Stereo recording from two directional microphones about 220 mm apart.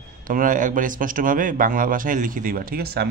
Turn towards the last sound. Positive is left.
turn(degrees=-45)  # may be behind; listen again after turning